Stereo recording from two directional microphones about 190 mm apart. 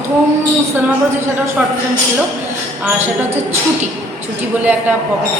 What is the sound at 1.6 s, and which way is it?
Speech, 5° right (ahead or behind).